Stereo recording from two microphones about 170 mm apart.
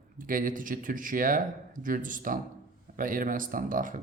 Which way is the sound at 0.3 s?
55° right (ahead or behind).